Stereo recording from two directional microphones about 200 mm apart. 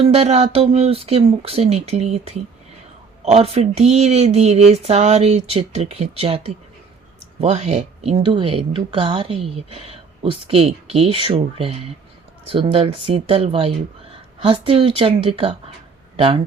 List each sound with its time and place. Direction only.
0.0 s speech: 30° right (ahead or behind)